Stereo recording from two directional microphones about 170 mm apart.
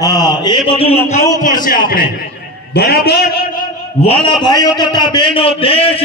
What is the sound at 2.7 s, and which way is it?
Speech, 65° left (ahead or behind).